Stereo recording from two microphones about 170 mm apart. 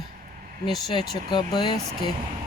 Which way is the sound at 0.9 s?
25° left (ahead or behind).